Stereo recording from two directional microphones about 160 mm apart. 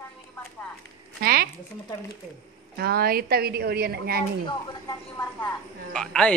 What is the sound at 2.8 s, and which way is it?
A woman's voice, 70° right (ahead or behind).